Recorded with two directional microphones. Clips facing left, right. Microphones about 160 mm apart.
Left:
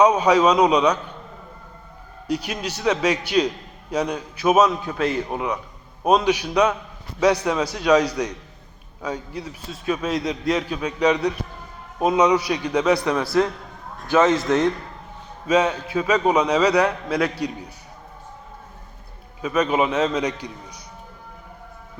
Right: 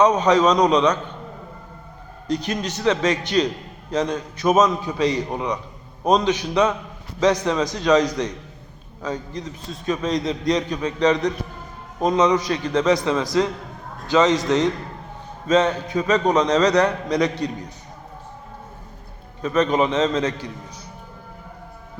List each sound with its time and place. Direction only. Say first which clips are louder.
0.0 s a man's voice: even; 10° left (ahead or behind)
2.2 s a man's voice: right 2 dB; 10° left (ahead or behind)
13.2 s a man's voice: left 1 dB; 15° right (ahead or behind)
15.4 s a man's voice: right 1 dB; 10° left (ahead or behind)
19.4 s a man's voice: right 1 dB; 10° left (ahead or behind)